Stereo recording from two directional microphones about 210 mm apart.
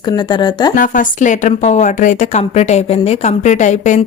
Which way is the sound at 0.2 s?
20° left (ahead or behind).